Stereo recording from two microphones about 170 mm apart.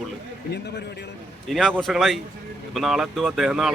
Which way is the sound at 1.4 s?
Centre (ahead or behind).